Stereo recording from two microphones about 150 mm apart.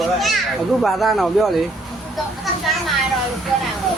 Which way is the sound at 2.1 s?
Centre (ahead or behind).